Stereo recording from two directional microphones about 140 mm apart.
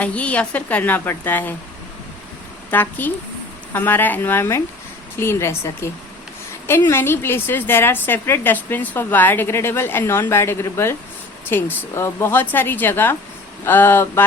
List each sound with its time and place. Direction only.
0.0 s a woman's voice: 10° left (ahead or behind)
2.6 s a woman's voice: 15° left (ahead or behind)